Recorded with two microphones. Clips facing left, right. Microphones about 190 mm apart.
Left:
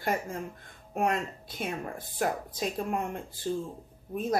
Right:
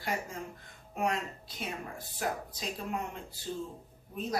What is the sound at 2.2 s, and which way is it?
Speech, 55° left (ahead or behind).